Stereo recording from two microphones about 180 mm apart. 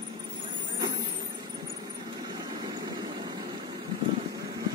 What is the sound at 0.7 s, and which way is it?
Vehicle, 20° right (ahead or behind).